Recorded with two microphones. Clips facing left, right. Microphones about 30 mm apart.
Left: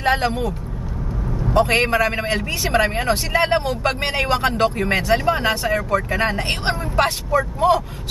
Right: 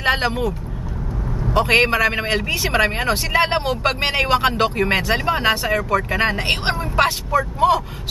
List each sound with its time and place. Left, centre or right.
0.0 s speech: right
1.5 s a man's voice: right
1.9 s a man's voice: right